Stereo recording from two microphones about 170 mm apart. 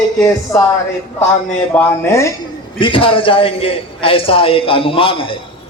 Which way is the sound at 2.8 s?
30° left (ahead or behind).